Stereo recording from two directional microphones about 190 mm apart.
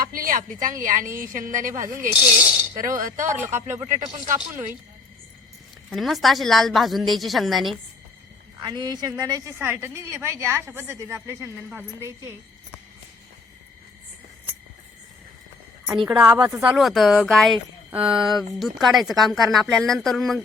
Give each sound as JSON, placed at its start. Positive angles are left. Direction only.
{"t": 0.0, "sound": "a woman's voice", "side_deg": -50}
{"t": 2.2, "sound": "a woman's voice", "side_deg": -5}
{"t": 2.7, "sound": "a woman's voice", "side_deg": -45}
{"t": 3.2, "sound": "a woman's voice", "side_deg": -15}
{"t": 5.9, "sound": "speech", "side_deg": 0}
{"t": 8.6, "sound": "a woman's voice", "side_deg": -20}
{"t": 16.0, "sound": "a woman's voice", "side_deg": -10}